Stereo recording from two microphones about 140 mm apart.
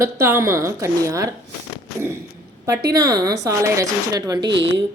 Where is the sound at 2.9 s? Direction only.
25° right (ahead or behind).